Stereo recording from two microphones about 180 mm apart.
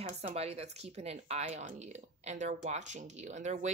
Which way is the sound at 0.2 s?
35° right (ahead or behind).